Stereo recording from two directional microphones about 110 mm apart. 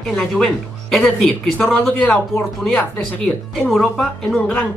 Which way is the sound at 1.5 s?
15° left (ahead or behind).